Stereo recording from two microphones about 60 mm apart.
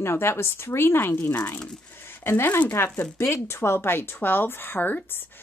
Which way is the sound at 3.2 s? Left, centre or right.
Left.